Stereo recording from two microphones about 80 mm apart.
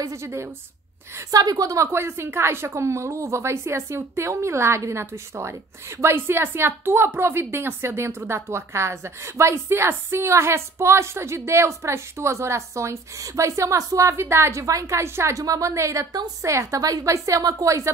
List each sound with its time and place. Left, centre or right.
0.0 s a woman's voice: right
1.3 s a woman's voice: right